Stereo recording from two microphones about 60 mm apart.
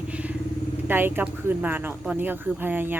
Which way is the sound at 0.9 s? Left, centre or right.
Right.